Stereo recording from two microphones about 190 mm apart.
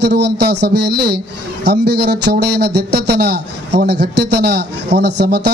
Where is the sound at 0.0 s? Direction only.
60° right (ahead or behind).